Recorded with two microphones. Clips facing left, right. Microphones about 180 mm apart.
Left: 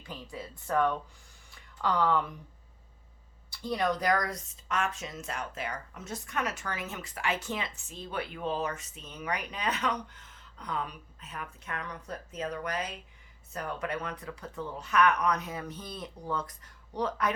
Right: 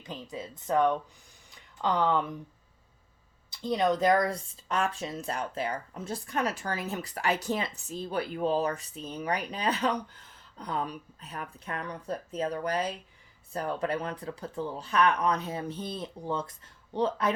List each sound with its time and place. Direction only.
0.0 s speech: 20° right (ahead or behind)
1.5 s a sound: 20° right (ahead or behind)
3.5 s speech: 20° right (ahead or behind)